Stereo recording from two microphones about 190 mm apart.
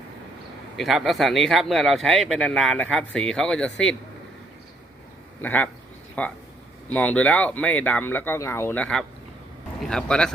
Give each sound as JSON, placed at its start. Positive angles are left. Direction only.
{"t": 0.8, "sound": "speech", "side_deg": 0}
{"t": 5.4, "sound": "speech", "side_deg": 10}